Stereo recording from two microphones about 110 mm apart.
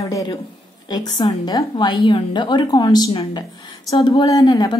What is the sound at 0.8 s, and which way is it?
A woman's voice, 40° left (ahead or behind).